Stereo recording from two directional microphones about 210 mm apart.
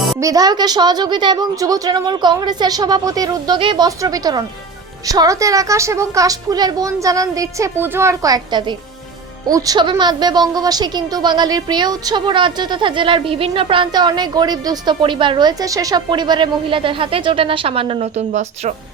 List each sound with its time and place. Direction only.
0.2 s a woman's voice: 15° right (ahead or behind)